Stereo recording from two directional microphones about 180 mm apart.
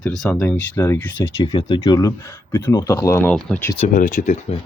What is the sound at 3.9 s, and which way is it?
Speech, 45° left (ahead or behind).